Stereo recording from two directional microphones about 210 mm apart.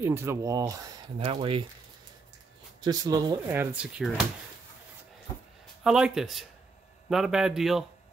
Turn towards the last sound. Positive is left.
turn(degrees=0)  # may be behind; listen again after turning